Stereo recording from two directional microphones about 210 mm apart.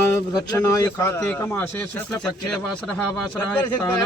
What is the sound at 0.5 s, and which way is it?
A man's voice, 15° left (ahead or behind).